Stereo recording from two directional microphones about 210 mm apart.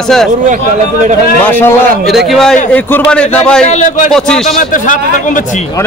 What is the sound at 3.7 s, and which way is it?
Speech, 35° left (ahead or behind).